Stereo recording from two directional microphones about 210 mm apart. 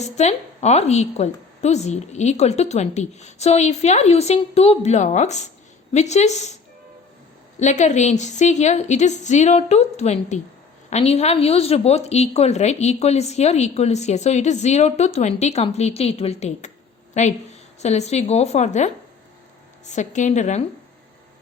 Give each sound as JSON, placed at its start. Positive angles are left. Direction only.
{"t": 0.0, "sound": "a woman's voice", "side_deg": 30}
{"t": 7.6, "sound": "a woman's voice", "side_deg": 35}
{"t": 19.9, "sound": "a woman's voice", "side_deg": 35}